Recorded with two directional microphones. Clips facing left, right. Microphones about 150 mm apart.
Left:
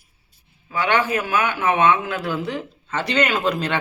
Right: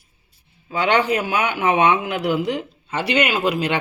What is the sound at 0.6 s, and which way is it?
Speech, 20° right (ahead or behind).